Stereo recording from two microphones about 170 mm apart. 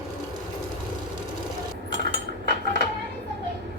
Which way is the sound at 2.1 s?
65° right (ahead or behind).